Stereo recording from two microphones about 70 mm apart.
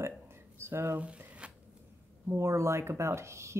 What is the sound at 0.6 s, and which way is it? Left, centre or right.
Speech, right.